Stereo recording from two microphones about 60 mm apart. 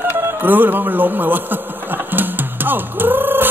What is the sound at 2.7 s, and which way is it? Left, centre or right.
Music, right.